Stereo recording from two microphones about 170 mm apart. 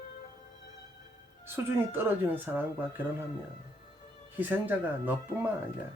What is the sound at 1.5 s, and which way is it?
Speech, 15° right (ahead or behind).